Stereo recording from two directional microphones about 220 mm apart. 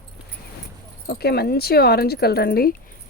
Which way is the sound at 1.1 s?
45° left (ahead or behind).